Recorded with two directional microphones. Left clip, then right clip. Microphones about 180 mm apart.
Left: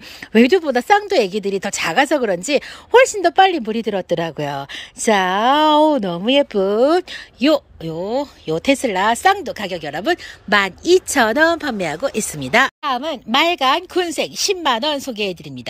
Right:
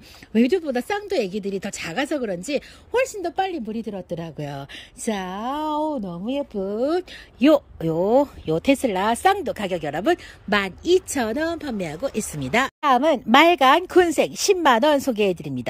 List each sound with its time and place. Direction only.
0.3 s speech: 5° right (ahead or behind)
5.9 s speech: 55° left (ahead or behind)
6.8 s speech: 5° right (ahead or behind); by 8.3 s 20° right (ahead or behind)
8.5 s speech: 10° right (ahead or behind)
12.8 s speech: 25° right (ahead or behind)